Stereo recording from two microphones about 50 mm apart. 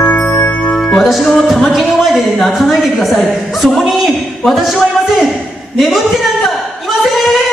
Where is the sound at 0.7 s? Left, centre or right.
Centre.